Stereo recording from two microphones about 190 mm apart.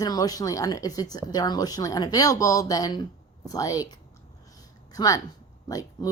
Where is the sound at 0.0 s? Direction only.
20° left (ahead or behind).